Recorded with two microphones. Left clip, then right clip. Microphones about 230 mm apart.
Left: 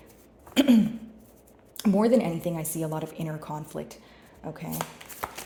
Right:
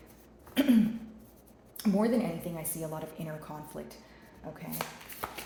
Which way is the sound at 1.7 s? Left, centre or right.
Left.